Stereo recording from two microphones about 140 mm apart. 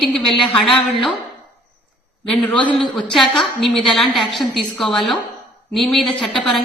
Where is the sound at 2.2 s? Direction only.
5° left (ahead or behind).